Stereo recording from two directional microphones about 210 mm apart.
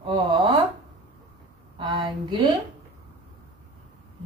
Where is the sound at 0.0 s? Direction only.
20° right (ahead or behind).